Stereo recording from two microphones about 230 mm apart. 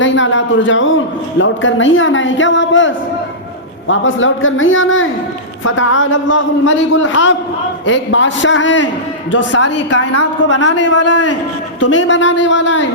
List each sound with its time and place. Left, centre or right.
0.0 s a man's voice: left
11.0 s a man's voice: left
11.9 s speech: left